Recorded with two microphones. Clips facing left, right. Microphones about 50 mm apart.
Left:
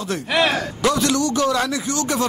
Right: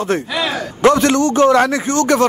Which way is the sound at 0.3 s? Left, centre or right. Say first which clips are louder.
Left 2 dB; left.